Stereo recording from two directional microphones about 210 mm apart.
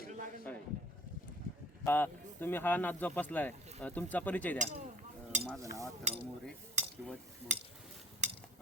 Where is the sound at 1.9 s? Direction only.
10° left (ahead or behind).